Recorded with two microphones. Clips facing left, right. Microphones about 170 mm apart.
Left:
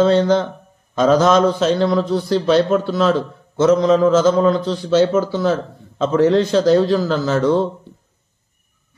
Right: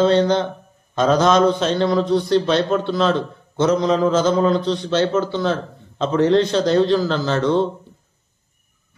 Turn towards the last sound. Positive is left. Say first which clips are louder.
# left 2 dB
turn(degrees=5)  # may be behind; listen again after turning